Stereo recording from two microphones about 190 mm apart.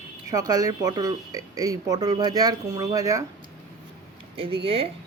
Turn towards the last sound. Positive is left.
turn(degrees=-30)  # may be behind; listen again after turning